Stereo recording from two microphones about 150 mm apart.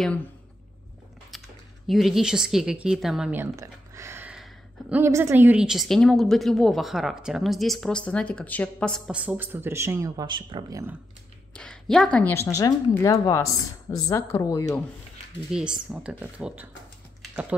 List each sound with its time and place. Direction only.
1.9 s a woman's voice: centre (ahead or behind)
3.3 s a sound: 20° right (ahead or behind)
5.0 s a woman's voice: 20° right (ahead or behind); by 9.1 s 5° left (ahead or behind)
9.1 s speech: 10° right (ahead or behind); by 10.8 s 30° right (ahead or behind)
11.5 s speech: 5° left (ahead or behind); by 14.8 s 20° left (ahead or behind)
15.5 s speech: 5° right (ahead or behind)